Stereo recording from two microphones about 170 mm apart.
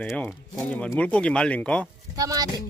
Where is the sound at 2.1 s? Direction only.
20° right (ahead or behind).